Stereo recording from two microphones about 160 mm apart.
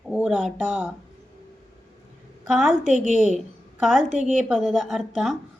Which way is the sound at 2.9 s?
45° left (ahead or behind).